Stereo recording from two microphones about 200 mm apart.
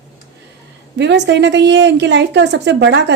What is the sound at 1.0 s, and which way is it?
A woman's voice, 60° right (ahead or behind).